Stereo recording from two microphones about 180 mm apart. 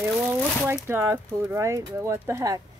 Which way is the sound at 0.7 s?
10° right (ahead or behind).